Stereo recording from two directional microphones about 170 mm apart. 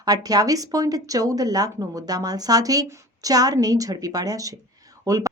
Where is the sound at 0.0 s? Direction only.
20° right (ahead or behind).